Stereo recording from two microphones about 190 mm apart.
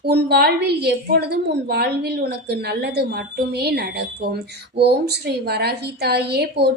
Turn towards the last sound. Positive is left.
turn(degrees=-60)  # may be behind; listen again after turning